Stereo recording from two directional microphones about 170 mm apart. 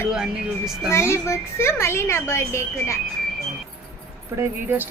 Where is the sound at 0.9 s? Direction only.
15° left (ahead or behind).